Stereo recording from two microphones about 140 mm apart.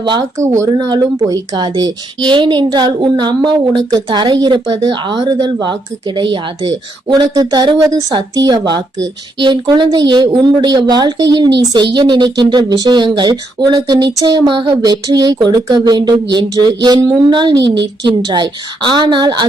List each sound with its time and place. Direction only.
0.0 s speech: 30° right (ahead or behind)